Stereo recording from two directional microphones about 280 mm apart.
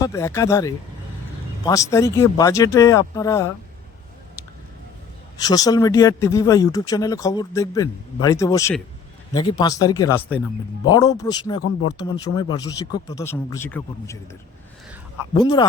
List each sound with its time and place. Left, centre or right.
0.0 s speech: centre
5.4 s speech: centre
15.4 s speech: centre